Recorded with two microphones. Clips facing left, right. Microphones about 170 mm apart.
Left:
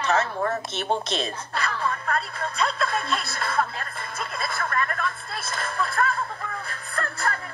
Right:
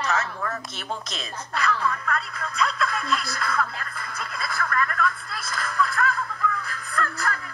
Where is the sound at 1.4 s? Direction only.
30° left (ahead or behind).